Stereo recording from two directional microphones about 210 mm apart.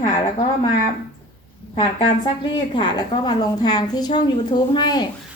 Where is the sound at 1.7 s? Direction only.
25° left (ahead or behind).